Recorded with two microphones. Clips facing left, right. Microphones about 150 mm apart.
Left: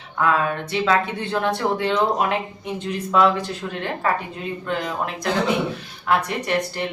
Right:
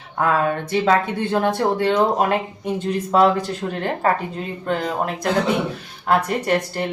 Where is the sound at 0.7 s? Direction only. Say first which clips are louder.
Right 2 dB; 45° right (ahead or behind).